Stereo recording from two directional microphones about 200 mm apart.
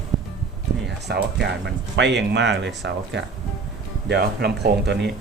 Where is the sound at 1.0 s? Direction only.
55° right (ahead or behind).